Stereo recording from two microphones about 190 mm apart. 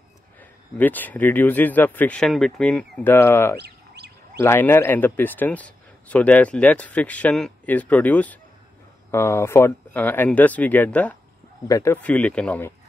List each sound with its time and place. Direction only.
0.4 s speech: 10° left (ahead or behind)
3.5 s fowl: 60° right (ahead or behind)
4.4 s speech: 15° left (ahead or behind)